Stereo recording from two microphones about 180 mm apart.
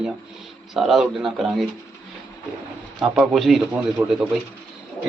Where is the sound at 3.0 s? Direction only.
Centre (ahead or behind).